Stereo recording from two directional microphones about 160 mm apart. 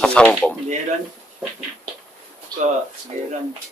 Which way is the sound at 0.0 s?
5° left (ahead or behind).